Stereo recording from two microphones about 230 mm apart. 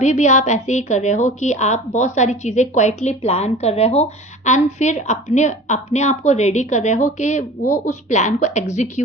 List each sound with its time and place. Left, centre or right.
0.0 s a woman's voice: left